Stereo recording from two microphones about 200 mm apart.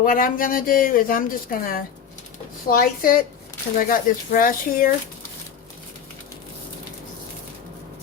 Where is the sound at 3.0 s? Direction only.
45° left (ahead or behind).